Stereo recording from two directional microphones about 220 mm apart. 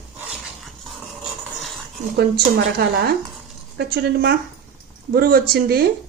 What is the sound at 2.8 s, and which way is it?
A woman's voice, 45° right (ahead or behind).